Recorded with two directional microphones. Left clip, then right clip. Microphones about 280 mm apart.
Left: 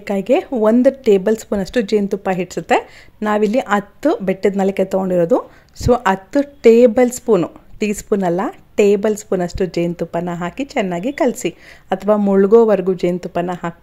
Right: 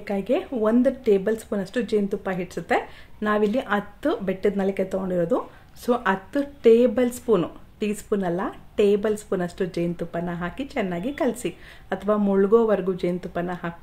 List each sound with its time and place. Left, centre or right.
0.0 s a woman's voice: left